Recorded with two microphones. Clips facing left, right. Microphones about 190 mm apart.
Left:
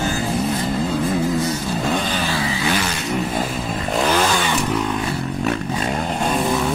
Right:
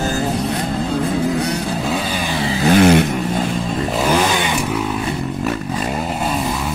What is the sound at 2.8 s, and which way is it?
Vehicle, 60° right (ahead or behind).